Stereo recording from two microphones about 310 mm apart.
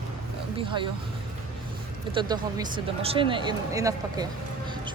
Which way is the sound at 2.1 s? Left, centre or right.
Centre.